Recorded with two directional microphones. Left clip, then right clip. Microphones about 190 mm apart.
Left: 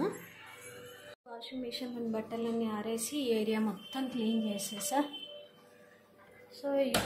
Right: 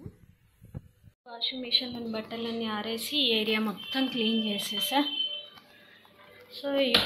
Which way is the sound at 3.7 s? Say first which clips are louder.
Right 8 dB; 10° right (ahead or behind).